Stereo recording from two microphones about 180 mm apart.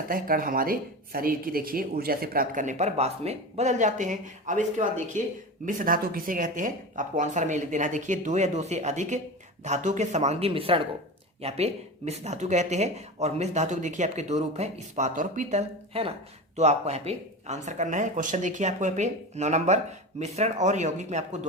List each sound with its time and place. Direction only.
0.1 s speech: 55° right (ahead or behind)